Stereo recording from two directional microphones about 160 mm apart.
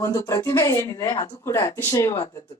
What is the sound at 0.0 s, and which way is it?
A woman's voice, 20° left (ahead or behind).